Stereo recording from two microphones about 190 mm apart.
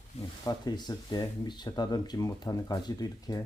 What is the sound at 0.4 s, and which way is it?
Speech, 20° left (ahead or behind).